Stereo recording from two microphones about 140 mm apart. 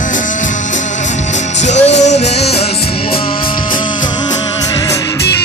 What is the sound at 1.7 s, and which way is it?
Music, 55° left (ahead or behind).